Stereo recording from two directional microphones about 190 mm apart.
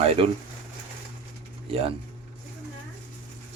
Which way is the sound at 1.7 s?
30° right (ahead or behind).